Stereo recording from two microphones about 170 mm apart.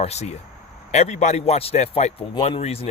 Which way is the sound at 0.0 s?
40° left (ahead or behind).